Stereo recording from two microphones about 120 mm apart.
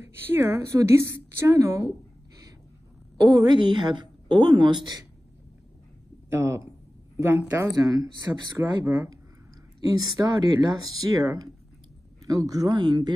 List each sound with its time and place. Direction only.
0.0 s speech: 20° right (ahead or behind)
3.2 s a woman's voice: 30° right (ahead or behind)
6.3 s a woman's voice: 25° right (ahead or behind)